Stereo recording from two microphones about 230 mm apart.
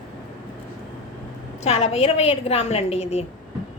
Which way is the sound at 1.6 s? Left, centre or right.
Left.